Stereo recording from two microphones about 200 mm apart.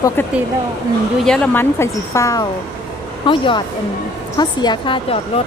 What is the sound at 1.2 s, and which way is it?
A woman's voice, 5° left (ahead or behind).